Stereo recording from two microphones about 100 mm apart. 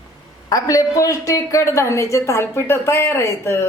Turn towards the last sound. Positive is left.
turn(degrees=30)  # may be behind; listen again after turning